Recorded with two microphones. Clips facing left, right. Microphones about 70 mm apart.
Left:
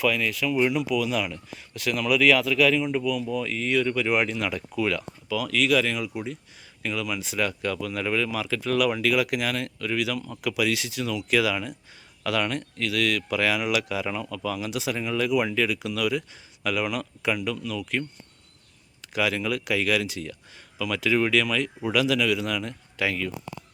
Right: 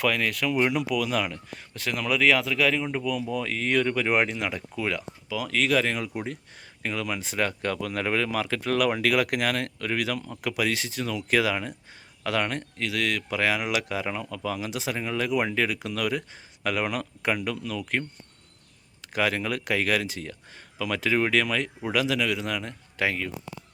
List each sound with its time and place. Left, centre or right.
0.0 s speech: right
1.8 s speech: right
6.8 s speech: right
19.0 s a man's voice: right